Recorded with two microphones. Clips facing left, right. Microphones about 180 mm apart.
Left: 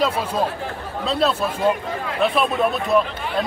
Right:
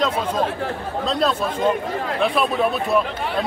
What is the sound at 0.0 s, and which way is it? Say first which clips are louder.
A man's voice: even; 10° left (ahead or behind).